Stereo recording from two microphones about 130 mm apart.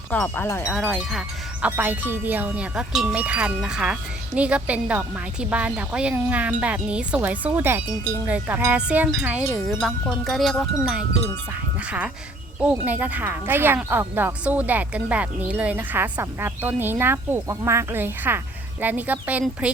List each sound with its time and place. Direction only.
0.1 s speech: 15° left (ahead or behind)
0.7 s wind chime: centre (ahead or behind)
1.6 s speech: 15° right (ahead or behind)
8.3 s wind chime: 15° right (ahead or behind); by 10.7 s centre (ahead or behind)
11.9 s speech: 10° right (ahead or behind)